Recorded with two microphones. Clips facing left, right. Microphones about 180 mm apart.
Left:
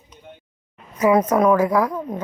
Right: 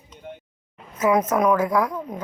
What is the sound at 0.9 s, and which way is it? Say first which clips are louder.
A woman's voice: left 3 dB; 10° left (ahead or behind).